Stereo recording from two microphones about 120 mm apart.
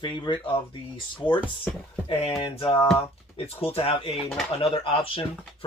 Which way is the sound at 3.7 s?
55° left (ahead or behind).